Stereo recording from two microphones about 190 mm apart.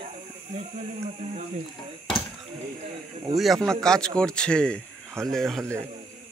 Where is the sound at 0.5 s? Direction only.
35° right (ahead or behind).